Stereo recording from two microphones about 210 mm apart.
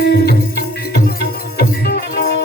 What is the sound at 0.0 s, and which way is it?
Music, 50° left (ahead or behind).